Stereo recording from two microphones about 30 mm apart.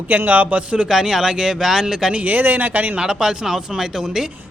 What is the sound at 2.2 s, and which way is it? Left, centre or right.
Speech, right.